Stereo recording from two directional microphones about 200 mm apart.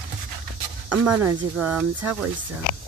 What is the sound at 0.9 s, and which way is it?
Speech, 5° right (ahead or behind).